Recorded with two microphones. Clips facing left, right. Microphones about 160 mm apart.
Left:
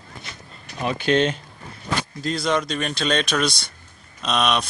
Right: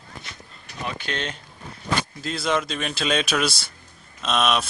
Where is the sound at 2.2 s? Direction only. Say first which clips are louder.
Left 3 dB; centre (ahead or behind).